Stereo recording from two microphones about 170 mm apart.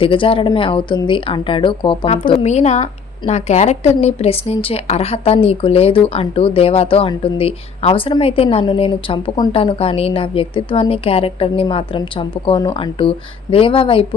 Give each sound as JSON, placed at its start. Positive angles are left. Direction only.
{"t": 0.0, "sound": "a woman's voice", "side_deg": 30}
{"t": 2.2, "sound": "a woman's voice", "side_deg": 40}